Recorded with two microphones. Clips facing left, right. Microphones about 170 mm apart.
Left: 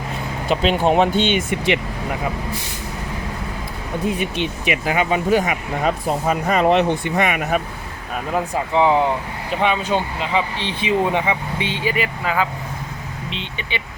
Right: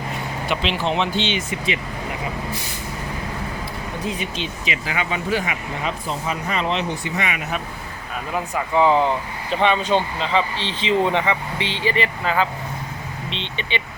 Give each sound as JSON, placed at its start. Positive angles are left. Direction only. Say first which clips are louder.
{"t": 0.4, "sound": "speech", "louder": "left 6 dB", "side_deg": 40}
{"t": 4.0, "sound": "speech", "louder": "left 6 dB", "side_deg": 60}
{"t": 8.5, "sound": "speech", "louder": "even", "side_deg": 20}